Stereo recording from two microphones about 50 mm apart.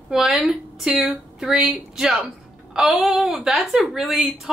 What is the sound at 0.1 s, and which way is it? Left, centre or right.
A woman's voice, centre.